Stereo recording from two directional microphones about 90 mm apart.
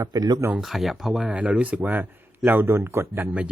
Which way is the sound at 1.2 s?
15° right (ahead or behind).